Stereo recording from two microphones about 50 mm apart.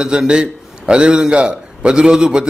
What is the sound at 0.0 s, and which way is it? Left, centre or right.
A man's voice, centre.